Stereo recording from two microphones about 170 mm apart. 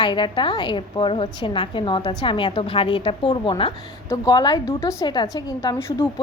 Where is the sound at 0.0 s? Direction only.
25° left (ahead or behind).